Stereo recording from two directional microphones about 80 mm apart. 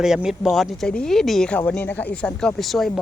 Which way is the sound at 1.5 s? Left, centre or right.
Centre.